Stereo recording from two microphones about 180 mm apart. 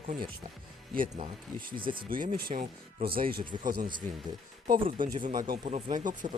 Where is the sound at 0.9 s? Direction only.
45° right (ahead or behind).